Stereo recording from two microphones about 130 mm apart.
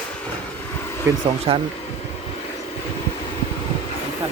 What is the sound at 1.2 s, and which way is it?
Speech, 50° right (ahead or behind).